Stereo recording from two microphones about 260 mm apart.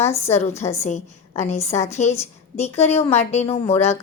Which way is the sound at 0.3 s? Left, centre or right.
Left.